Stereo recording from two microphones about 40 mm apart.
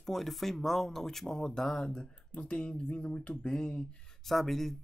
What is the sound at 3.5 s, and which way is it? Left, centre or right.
Speech, left.